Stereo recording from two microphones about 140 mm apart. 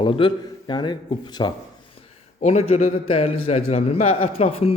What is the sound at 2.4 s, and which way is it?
A man's voice, 50° left (ahead or behind).